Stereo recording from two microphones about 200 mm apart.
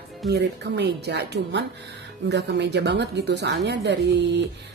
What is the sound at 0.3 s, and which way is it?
Speech, 55° right (ahead or behind).